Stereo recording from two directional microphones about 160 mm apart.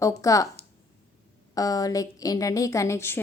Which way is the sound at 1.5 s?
20° left (ahead or behind).